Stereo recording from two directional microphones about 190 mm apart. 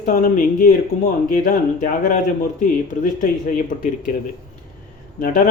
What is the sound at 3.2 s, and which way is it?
Speech, 45° left (ahead or behind).